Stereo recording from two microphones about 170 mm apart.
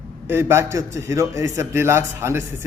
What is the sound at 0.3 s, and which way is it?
A man's voice, 15° right (ahead or behind).